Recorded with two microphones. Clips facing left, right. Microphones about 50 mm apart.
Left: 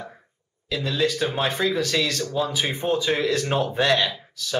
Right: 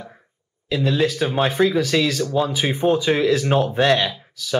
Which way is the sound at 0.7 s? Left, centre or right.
Centre.